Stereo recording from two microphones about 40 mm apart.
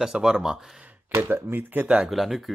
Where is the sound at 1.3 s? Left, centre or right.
Right.